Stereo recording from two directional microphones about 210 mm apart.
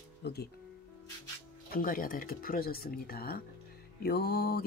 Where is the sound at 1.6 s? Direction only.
40° left (ahead or behind).